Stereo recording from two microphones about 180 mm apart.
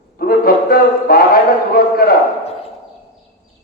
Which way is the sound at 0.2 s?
55° left (ahead or behind).